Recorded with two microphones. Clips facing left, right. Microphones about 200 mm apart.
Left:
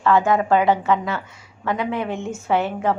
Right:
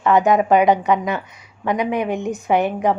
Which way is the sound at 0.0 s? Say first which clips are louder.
Right 2 dB; 20° right (ahead or behind).